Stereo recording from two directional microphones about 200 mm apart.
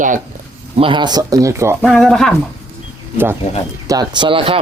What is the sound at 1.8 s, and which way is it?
Speech, 5° left (ahead or behind).